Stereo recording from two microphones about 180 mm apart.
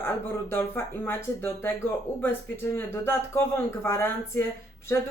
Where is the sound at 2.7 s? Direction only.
15° left (ahead or behind).